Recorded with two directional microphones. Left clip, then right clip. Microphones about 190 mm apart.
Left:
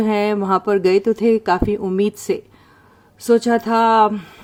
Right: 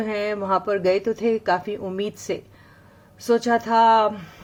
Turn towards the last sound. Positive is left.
turn(degrees=40)  # may be behind; listen again after turning